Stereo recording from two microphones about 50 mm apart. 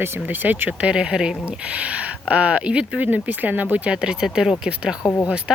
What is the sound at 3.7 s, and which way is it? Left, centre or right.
Speech, right.